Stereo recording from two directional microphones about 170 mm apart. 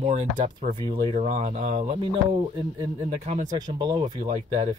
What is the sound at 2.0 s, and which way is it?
Speech, 25° right (ahead or behind).